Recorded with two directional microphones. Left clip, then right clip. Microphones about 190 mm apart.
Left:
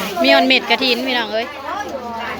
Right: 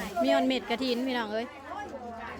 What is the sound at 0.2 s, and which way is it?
A woman's voice, 20° right (ahead or behind).